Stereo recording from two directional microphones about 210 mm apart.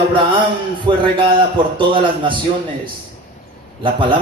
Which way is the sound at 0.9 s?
25° right (ahead or behind).